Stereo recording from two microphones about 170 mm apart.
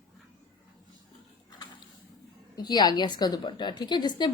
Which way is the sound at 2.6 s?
25° left (ahead or behind).